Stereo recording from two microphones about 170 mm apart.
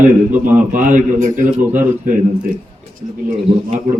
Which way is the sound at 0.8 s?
50° right (ahead or behind).